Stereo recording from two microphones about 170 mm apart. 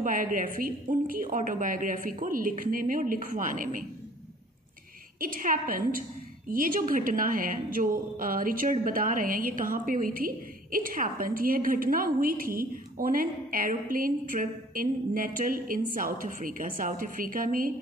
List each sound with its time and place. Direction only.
0.0 s a woman's voice: 55° right (ahead or behind)
5.2 s a woman's voice: 55° right (ahead or behind)